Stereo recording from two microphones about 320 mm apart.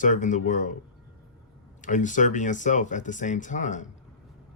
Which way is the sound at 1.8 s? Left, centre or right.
Left.